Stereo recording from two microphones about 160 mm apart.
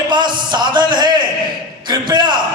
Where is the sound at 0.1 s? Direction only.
30° right (ahead or behind).